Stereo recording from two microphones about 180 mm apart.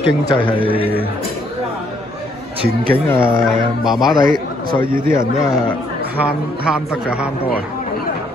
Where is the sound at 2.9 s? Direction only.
15° left (ahead or behind).